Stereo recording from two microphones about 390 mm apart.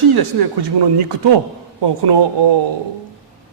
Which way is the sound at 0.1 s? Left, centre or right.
Right.